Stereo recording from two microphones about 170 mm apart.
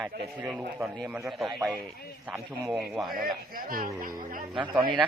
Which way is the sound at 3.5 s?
55° right (ahead or behind).